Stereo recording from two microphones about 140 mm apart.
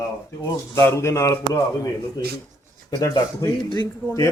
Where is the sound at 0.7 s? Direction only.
20° left (ahead or behind).